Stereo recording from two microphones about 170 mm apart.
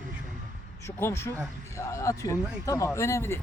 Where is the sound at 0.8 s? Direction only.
15° left (ahead or behind).